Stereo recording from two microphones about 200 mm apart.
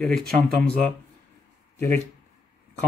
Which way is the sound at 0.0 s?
5° left (ahead or behind).